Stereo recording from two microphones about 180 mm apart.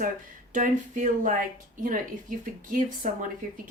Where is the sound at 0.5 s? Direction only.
45° right (ahead or behind).